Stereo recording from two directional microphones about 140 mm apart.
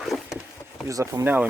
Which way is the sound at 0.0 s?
Centre (ahead or behind).